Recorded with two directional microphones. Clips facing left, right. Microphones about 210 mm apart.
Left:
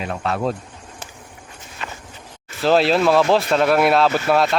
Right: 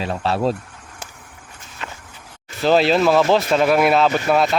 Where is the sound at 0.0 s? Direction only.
30° right (ahead or behind).